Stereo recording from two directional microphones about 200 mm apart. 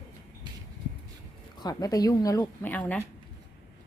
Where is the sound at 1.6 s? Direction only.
20° left (ahead or behind).